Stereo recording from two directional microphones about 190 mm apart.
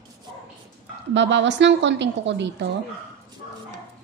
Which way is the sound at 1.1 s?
70° right (ahead or behind).